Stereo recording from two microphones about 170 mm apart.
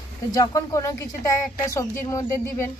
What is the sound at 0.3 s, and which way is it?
Speech, 20° left (ahead or behind).